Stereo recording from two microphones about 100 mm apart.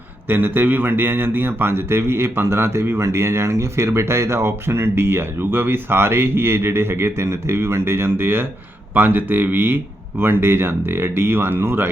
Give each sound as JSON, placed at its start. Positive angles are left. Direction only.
{"t": 0.3, "sound": "speech", "side_deg": -20}